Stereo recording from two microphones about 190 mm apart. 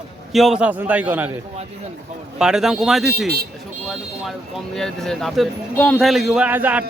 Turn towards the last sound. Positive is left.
turn(degrees=-10)  # may be behind; listen again after turning